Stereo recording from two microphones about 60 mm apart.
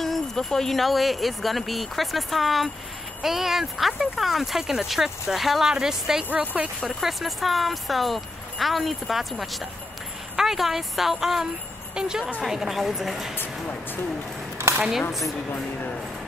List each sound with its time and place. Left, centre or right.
0.0 s a woman's voice: centre
6.3 s speech: right
6.8 s speech: centre
14.9 s speech: centre